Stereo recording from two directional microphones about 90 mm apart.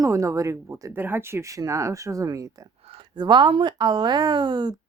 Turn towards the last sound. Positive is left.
turn(degrees=-55)  # may be behind; listen again after turning